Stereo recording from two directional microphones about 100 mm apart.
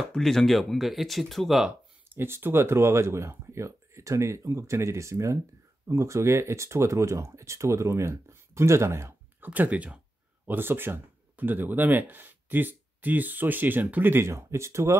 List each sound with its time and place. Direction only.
0.1 s speech: centre (ahead or behind)
2.1 s speech: 25° right (ahead or behind)
9.5 s speech: 15° right (ahead or behind)